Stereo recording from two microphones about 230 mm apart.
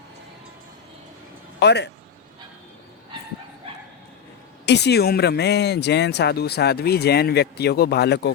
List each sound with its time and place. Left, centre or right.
1.5 s speech: left
4.6 s speech: left